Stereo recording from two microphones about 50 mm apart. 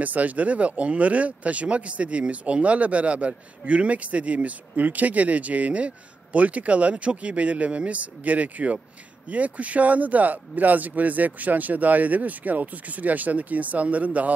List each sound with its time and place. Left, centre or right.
0.0 s speech: right